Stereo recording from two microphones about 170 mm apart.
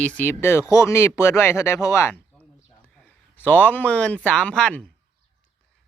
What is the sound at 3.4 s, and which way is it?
Speech, 10° left (ahead or behind).